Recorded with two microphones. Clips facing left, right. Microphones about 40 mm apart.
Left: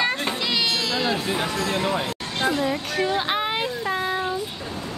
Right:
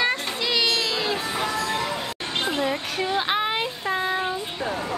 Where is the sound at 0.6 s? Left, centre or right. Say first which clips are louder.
Right 2 dB; centre.